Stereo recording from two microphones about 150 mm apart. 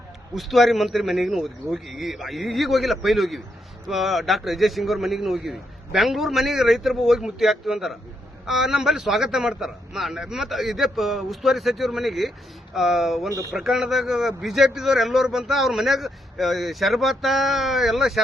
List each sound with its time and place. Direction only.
0.3 s a man's voice: centre (ahead or behind)